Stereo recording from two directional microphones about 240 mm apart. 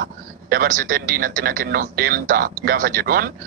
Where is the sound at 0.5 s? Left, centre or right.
Right.